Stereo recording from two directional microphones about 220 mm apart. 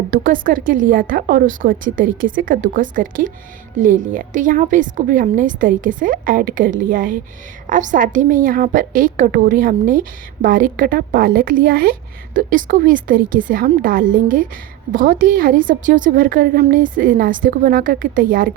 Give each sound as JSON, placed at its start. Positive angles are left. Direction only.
{"t": 0.1, "sound": "a woman's voice", "side_deg": -40}